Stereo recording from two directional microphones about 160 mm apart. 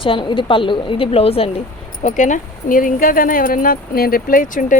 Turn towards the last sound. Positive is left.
turn(degrees=60)  # may be behind; listen again after turning